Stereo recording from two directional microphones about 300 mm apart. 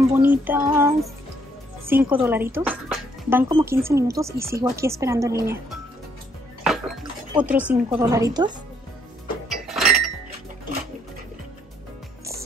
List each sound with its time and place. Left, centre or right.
0.1 s a woman's voice: centre
6.6 s chink: centre
7.9 s a woman's voice: centre
9.5 s chink: centre